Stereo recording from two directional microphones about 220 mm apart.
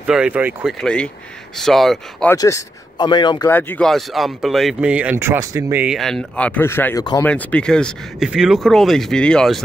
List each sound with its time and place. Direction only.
0.0 s speech: 5° right (ahead or behind)
2.3 s speech: 15° left (ahead or behind)
3.4 s speech: 10° left (ahead or behind)